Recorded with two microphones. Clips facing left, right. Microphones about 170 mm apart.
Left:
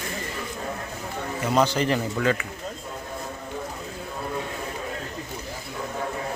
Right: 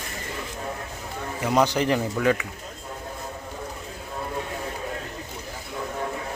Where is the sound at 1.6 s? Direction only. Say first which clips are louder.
Right 1 dB; 15° right (ahead or behind).